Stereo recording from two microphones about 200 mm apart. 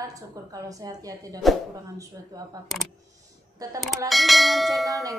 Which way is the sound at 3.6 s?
15° right (ahead or behind).